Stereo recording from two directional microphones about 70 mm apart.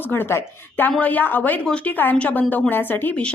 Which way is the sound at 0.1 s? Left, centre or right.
Left.